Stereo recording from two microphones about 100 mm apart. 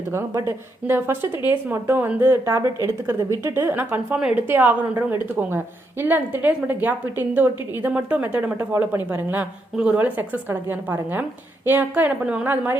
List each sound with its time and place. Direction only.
0.1 s a woman's voice: 25° right (ahead or behind)
4.2 s a woman's voice: 10° right (ahead or behind)
4.4 s a woman's voice: 20° right (ahead or behind)